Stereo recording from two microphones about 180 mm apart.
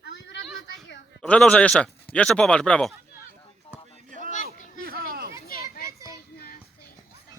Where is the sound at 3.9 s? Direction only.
45° right (ahead or behind).